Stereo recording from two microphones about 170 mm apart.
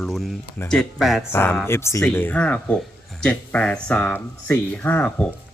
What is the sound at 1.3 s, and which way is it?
Speech, 15° left (ahead or behind).